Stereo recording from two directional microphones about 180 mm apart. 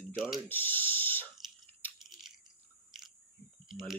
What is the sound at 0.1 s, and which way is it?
Speech, 5° right (ahead or behind).